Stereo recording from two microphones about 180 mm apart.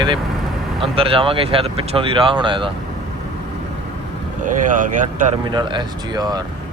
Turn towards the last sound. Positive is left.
turn(degrees=-20)  # may be behind; listen again after turning